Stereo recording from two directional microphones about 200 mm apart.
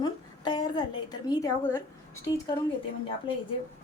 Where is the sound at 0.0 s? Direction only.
20° left (ahead or behind).